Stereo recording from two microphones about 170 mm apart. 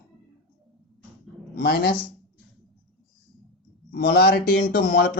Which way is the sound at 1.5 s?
65° left (ahead or behind).